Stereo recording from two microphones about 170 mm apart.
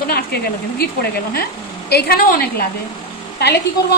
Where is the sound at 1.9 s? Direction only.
65° left (ahead or behind).